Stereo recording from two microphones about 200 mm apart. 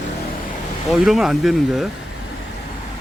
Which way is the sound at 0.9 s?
Centre (ahead or behind).